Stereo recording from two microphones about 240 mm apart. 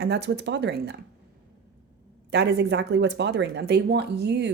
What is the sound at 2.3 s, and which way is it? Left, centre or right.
A woman's voice, right.